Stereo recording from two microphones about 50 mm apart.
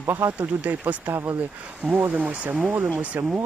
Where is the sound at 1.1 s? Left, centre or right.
Right.